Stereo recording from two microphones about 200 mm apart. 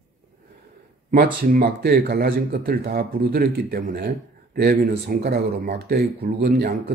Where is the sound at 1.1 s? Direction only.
45° right (ahead or behind).